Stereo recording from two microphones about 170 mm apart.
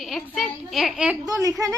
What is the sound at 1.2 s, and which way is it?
Speech, 20° right (ahead or behind).